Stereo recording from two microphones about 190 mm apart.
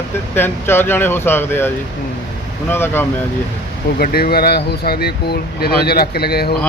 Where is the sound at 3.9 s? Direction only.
50° left (ahead or behind).